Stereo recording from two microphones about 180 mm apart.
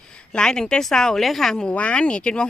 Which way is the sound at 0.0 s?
5° left (ahead or behind).